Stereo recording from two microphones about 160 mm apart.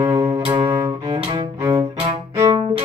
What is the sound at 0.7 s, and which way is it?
Cello, 20° right (ahead or behind).